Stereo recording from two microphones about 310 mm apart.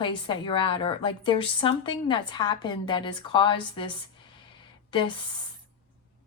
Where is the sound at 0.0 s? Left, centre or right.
Centre.